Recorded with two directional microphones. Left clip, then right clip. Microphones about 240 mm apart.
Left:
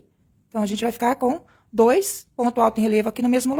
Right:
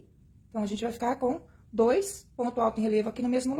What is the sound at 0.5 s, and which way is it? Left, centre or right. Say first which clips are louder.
A woman's voice: left 8 dB; left.